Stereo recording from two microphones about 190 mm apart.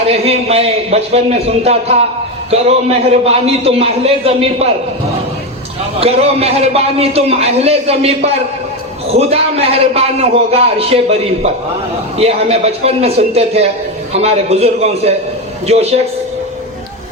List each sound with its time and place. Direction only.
0.1 s a man's voice: 30° right (ahead or behind)
6.0 s a man's voice: 30° right (ahead or behind)